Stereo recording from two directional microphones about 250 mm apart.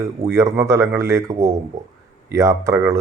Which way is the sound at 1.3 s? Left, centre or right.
Right.